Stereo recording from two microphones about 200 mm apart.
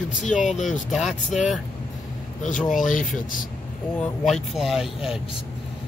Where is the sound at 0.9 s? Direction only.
Centre (ahead or behind).